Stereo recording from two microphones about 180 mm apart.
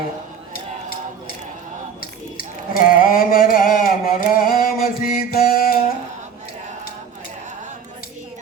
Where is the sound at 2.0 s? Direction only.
50° left (ahead or behind).